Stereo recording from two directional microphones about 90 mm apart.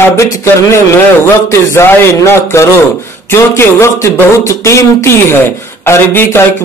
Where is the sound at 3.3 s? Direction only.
30° left (ahead or behind).